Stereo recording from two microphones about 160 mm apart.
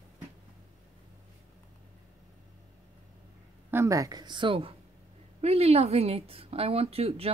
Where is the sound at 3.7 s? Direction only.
20° right (ahead or behind); by 7.3 s 40° right (ahead or behind).